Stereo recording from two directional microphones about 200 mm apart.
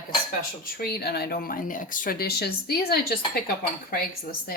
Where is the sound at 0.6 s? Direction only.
50° left (ahead or behind).